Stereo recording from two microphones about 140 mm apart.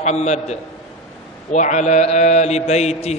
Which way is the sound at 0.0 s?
55° left (ahead or behind).